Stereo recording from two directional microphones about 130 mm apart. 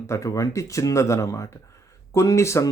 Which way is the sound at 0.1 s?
25° left (ahead or behind).